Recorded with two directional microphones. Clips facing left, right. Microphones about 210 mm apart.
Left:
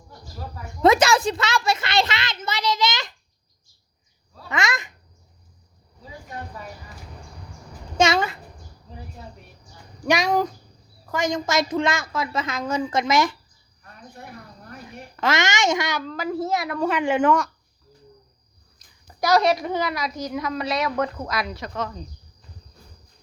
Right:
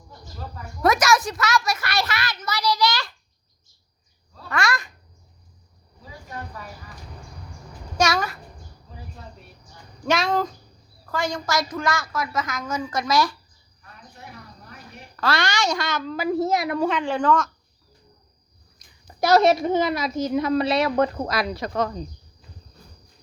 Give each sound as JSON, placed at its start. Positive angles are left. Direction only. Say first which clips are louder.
{"t": 0.8, "sound": "a sound", "louder": "left 3 dB", "side_deg": 25}
{"t": 4.4, "sound": "babbling", "louder": "right 1 dB", "side_deg": 20}
{"t": 7.9, "sound": "a sound", "louder": "left 3 dB", "side_deg": 25}
{"t": 10.1, "sound": "a woman's voice", "louder": "left 2 dB", "side_deg": 15}
{"t": 15.1, "sound": "a woman's voice", "louder": "left 1 dB", "side_deg": 20}
{"t": 16.0, "sound": "speech", "louder": "right 3 dB", "side_deg": -10}
{"t": 16.8, "sound": "speech", "louder": "left 2 dB", "side_deg": 10}
{"t": 19.0, "sound": "a woman's voice", "louder": "right 2 dB", "side_deg": -25}